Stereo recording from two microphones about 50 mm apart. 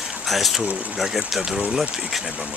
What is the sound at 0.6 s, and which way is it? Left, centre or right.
Speech, right.